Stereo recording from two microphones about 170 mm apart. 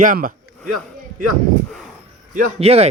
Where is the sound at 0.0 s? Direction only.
50° right (ahead or behind).